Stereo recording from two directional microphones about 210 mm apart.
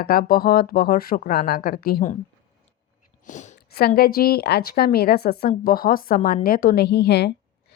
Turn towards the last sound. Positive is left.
turn(degrees=50)  # may be behind; listen again after turning